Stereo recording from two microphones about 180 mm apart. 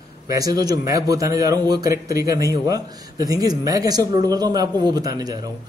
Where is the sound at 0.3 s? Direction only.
20° right (ahead or behind).